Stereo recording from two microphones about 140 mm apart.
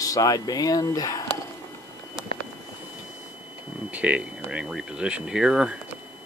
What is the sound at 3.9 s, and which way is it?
Speech, 10° right (ahead or behind).